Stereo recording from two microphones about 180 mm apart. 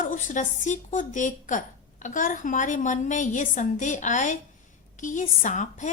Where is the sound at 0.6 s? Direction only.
45° left (ahead or behind).